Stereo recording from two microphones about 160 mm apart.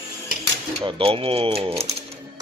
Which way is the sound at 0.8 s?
35° right (ahead or behind).